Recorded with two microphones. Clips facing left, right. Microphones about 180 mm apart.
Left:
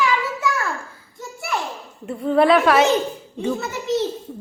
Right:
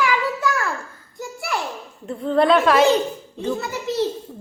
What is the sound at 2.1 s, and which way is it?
Speech, 10° left (ahead or behind).